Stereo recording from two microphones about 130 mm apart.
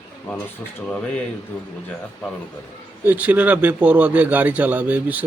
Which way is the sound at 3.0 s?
15° right (ahead or behind).